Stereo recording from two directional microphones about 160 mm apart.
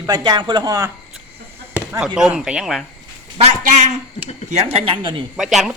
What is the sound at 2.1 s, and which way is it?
Speech, 5° right (ahead or behind).